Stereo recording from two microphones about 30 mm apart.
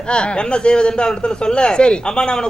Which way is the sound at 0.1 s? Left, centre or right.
Left.